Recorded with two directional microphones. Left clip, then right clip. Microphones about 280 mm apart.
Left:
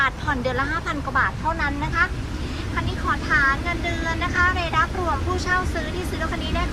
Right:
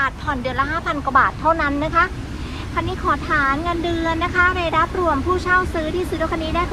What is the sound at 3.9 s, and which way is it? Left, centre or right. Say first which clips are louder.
Speech: right 4 dB; centre.